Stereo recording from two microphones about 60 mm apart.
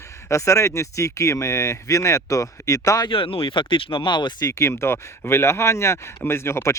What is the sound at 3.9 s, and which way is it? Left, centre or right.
Speech, left.